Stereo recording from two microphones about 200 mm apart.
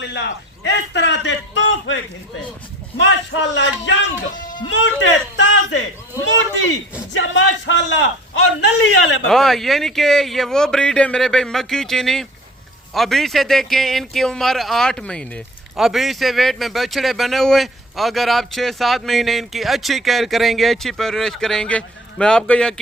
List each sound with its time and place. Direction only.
0.0 s a man's voice: 60° left (ahead or behind)
3.0 s a man's voice: 65° left (ahead or behind)
7.1 s a man's voice: 65° left (ahead or behind)
9.2 s a man's voice: centre (ahead or behind)